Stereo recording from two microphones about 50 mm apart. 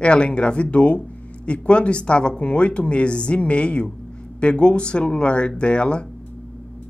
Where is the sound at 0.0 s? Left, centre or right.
Left.